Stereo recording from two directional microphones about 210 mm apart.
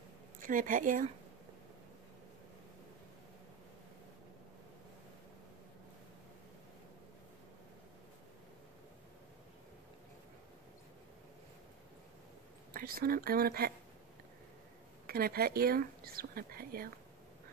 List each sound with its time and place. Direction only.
0.4 s a woman's voice: 40° right (ahead or behind)
12.7 s speech: 45° right (ahead or behind)
15.0 s speech: 45° right (ahead or behind)